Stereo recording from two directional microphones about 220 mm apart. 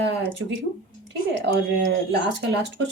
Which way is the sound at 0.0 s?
55° right (ahead or behind).